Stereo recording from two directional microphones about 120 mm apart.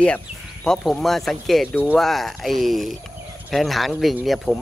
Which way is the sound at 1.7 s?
15° left (ahead or behind).